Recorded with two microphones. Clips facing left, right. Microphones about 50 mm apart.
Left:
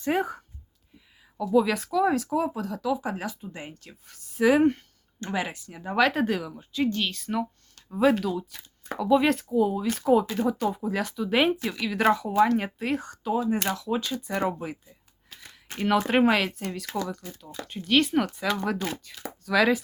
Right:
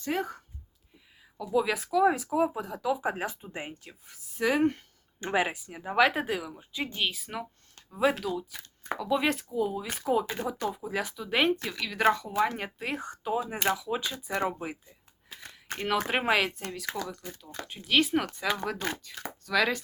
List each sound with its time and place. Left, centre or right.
0.0 s speech: centre
1.5 s speech: centre
5.2 s speech: centre
13.1 s speech: centre
14.8 s a sound: centre
16.3 s speech: centre